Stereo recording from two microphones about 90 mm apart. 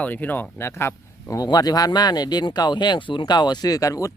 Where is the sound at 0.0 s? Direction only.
20° left (ahead or behind).